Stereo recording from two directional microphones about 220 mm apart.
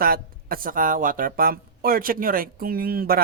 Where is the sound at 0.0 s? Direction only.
40° right (ahead or behind).